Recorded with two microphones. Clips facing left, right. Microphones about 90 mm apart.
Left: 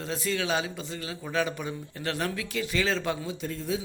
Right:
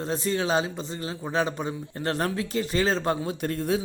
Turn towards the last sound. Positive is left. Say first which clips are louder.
# right 5 dB
turn(degrees=-60)  # may be behind; listen again after turning